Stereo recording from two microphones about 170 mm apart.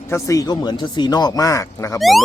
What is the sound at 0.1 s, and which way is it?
Speech, 20° left (ahead or behind).